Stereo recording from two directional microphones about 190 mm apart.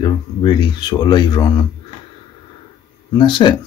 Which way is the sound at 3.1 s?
25° left (ahead or behind).